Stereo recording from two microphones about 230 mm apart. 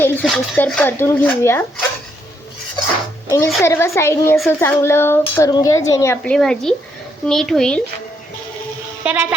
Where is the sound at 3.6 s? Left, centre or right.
Centre.